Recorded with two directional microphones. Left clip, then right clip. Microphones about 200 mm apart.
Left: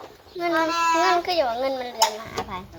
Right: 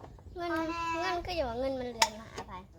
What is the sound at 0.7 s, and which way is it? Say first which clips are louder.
Child singing: left 13 dB; 40° left (ahead or behind).